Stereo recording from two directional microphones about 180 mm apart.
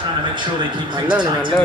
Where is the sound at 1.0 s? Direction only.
25° right (ahead or behind).